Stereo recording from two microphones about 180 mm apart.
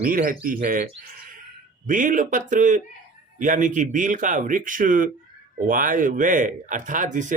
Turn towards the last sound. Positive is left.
turn(degrees=-45)  # may be behind; listen again after turning